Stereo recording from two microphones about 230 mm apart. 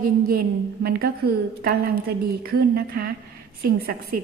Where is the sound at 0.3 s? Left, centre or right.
Right.